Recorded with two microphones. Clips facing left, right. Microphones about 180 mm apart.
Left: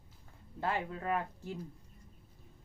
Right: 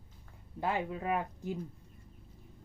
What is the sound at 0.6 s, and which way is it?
Cutlery, 15° right (ahead or behind).